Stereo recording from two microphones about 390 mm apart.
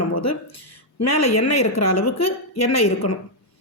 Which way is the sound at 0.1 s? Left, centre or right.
Left.